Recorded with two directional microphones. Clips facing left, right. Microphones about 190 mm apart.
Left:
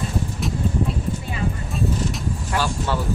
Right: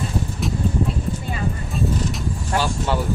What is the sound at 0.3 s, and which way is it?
Vehicle, centre (ahead or behind).